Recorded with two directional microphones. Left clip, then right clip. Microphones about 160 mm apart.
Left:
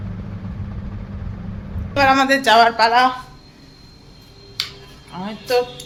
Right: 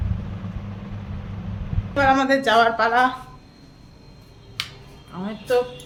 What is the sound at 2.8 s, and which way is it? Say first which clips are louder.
Speech: left 4 dB; 20° right (ahead or behind).